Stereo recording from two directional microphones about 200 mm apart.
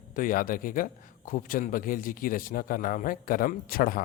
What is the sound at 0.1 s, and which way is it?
A man's voice, 45° left (ahead or behind).